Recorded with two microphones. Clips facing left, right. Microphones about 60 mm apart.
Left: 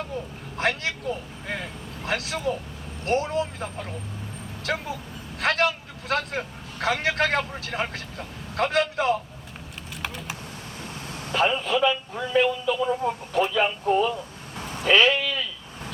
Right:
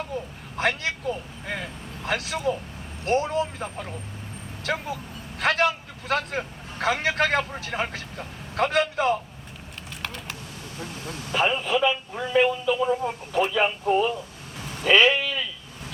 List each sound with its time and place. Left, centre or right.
0.5 s a man's voice: centre
10.0 s typing: centre
11.0 s vehicle: left
11.3 s speech: centre